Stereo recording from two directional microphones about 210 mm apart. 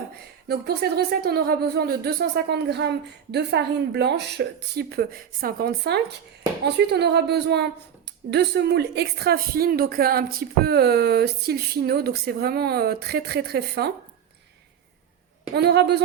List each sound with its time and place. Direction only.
0.4 s a woman's voice: 50° right (ahead or behind)
15.5 s a woman's voice: 50° right (ahead or behind)